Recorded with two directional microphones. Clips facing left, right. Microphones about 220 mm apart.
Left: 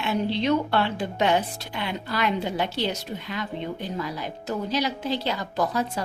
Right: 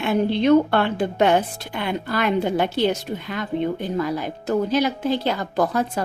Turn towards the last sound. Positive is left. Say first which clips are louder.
# right 4 dB
turn(degrees=-50)  # may be behind; listen again after turning